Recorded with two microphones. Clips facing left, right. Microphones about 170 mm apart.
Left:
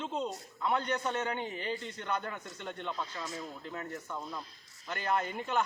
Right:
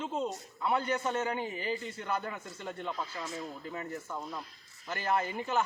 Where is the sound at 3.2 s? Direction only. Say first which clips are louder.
Right 1 dB; 25° right (ahead or behind).